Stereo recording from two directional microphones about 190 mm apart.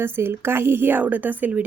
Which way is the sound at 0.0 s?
10° right (ahead or behind).